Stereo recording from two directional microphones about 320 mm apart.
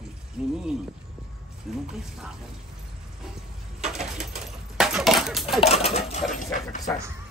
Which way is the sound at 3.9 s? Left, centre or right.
Right.